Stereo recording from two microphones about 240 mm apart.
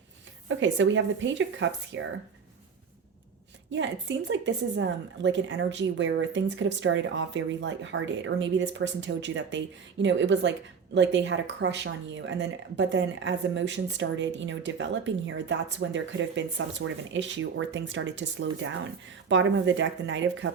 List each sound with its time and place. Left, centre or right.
0.4 s speech: right
4.3 s speech: right